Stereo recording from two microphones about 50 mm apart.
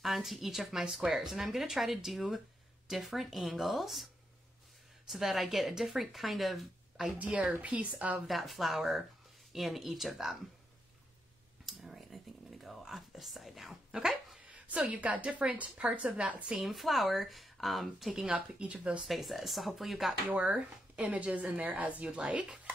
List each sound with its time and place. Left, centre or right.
0.0 s speech: centre
5.1 s speech: centre
7.2 s speech: right
8.3 s speech: centre
11.6 s whispering: centre
14.4 s a sound: right
14.9 s speech: right
16.5 s speech: centre
18.2 s speech: right
19.0 s speech: centre
20.2 s speech: right
20.5 s speech: centre
21.1 s a woman's voice: right
22.3 s speech: centre